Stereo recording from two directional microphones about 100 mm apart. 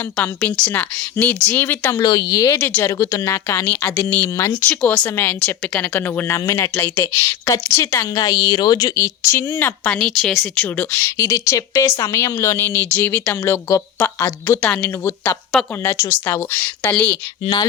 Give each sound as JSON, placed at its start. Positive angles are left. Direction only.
{"t": 0.2, "sound": "a woman's voice", "side_deg": 10}
{"t": 2.0, "sound": "speech", "side_deg": 40}
{"t": 2.6, "sound": "a woman's voice", "side_deg": 20}
{"t": 3.0, "sound": "a woman's voice", "side_deg": 30}
{"t": 4.1, "sound": "a woman's voice", "side_deg": 25}
{"t": 4.7, "sound": "a woman's voice", "side_deg": 10}
{"t": 10.0, "sound": "speech", "side_deg": 5}
{"t": 10.5, "sound": "a woman's voice", "side_deg": 15}
{"t": 14.6, "sound": "speech", "side_deg": 10}
{"t": 15.0, "sound": "a woman's voice", "side_deg": 25}
{"t": 17.4, "sound": "speech", "side_deg": 45}